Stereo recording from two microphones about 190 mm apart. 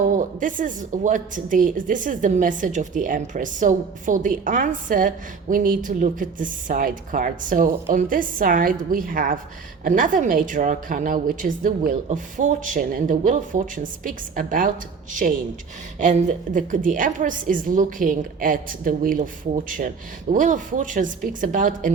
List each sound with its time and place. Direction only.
0.1 s a woman's voice: 45° right (ahead or behind)
16.0 s a woman's voice: 40° right (ahead or behind)